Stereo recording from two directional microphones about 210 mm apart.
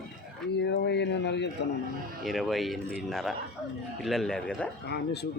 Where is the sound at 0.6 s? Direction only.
50° left (ahead or behind).